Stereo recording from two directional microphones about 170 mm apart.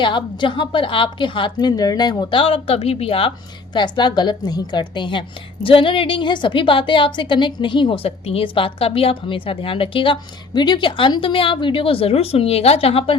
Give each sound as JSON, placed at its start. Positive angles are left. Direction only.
{"t": 0.0, "sound": "a woman's voice", "side_deg": 30}